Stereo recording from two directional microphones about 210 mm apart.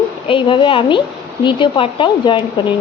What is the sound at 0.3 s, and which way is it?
A woman's voice, 25° left (ahead or behind).